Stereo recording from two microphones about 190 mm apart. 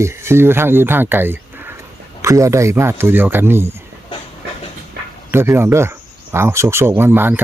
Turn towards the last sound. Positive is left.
turn(degrees=-10)  # may be behind; listen again after turning